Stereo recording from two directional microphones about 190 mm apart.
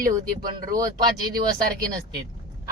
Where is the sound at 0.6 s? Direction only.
20° right (ahead or behind).